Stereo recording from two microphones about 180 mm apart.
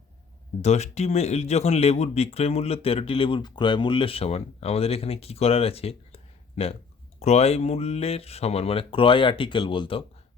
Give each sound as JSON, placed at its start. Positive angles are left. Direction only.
{"t": 0.6, "sound": "speech", "side_deg": 35}